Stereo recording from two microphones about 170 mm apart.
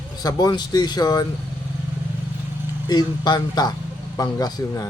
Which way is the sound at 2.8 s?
25° left (ahead or behind).